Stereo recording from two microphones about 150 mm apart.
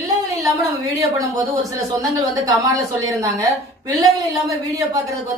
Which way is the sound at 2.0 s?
20° right (ahead or behind).